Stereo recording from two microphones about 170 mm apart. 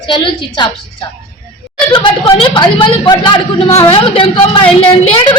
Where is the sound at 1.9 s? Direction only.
30° left (ahead or behind).